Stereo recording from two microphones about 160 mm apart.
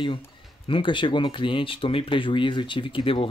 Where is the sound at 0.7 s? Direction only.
30° left (ahead or behind).